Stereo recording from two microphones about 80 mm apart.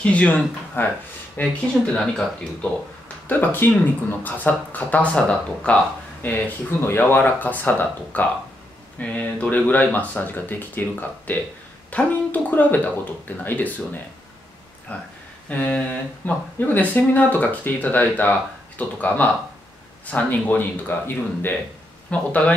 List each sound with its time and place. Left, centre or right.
0.0 s speech: centre
2.0 s speech: centre
3.3 s speech: left
6.2 s speech: left